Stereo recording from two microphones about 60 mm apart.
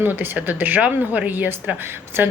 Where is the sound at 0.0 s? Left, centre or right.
Right.